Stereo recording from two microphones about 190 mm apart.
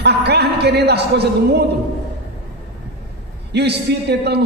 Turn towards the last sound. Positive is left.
turn(degrees=-60)  # may be behind; listen again after turning